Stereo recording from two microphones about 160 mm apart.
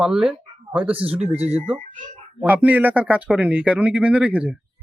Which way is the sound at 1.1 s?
40° right (ahead or behind).